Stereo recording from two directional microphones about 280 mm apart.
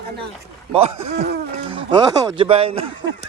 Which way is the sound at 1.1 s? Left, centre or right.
Right.